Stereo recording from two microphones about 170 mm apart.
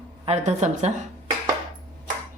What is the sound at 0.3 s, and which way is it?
Speech, 40° right (ahead or behind).